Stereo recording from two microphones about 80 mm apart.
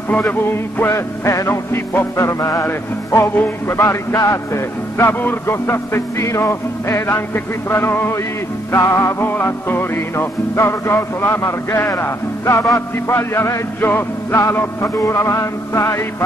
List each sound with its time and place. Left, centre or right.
0.8 s music: left